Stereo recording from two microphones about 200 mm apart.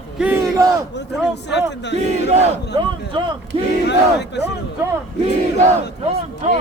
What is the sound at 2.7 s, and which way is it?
Speech, 25° right (ahead or behind).